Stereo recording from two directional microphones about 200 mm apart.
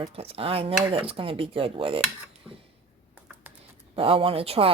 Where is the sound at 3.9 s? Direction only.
25° right (ahead or behind).